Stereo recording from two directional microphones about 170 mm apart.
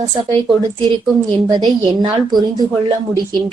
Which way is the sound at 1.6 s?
25° right (ahead or behind).